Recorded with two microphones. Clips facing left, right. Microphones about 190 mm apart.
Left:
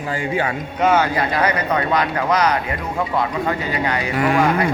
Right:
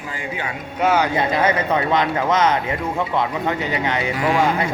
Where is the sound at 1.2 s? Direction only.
25° right (ahead or behind).